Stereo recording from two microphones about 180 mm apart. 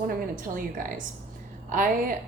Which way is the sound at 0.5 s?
50° right (ahead or behind).